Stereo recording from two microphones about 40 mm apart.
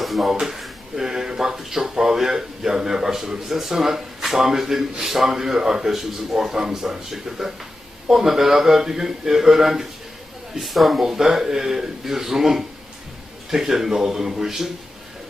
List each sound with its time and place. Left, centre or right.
0.0 s speech: centre